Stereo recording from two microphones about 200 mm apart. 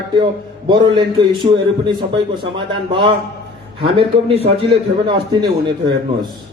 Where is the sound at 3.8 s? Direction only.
30° right (ahead or behind).